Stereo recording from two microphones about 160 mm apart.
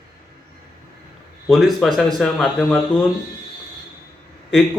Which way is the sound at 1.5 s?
Centre (ahead or behind).